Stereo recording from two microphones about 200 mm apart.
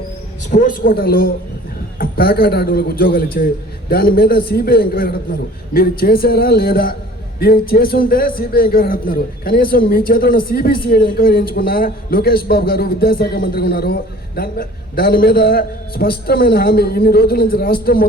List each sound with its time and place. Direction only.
0.5 s a man's voice: 45° left (ahead or behind)